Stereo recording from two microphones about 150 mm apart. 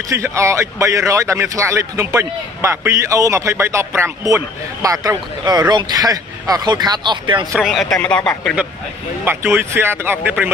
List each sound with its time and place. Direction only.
0.1 s speech: 20° right (ahead or behind)
7.5 s speech: centre (ahead or behind)
9.2 s speech: 15° right (ahead or behind)